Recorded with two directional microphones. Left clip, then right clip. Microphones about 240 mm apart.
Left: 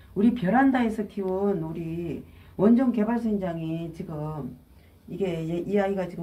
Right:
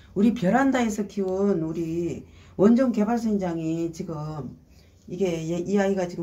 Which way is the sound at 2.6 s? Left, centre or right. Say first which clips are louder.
Right 2 dB; right.